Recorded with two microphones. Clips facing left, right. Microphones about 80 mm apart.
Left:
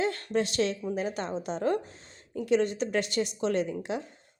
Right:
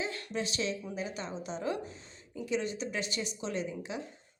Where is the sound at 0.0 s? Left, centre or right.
Left.